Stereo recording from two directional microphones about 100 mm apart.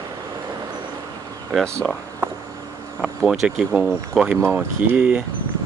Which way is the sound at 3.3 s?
5° right (ahead or behind).